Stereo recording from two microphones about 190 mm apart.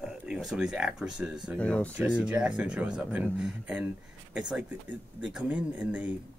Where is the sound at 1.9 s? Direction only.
10° right (ahead or behind).